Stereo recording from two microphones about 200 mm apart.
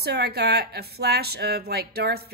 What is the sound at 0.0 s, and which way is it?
Speech, 50° right (ahead or behind).